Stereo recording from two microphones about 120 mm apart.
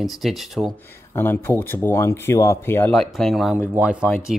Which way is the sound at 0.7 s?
20° left (ahead or behind).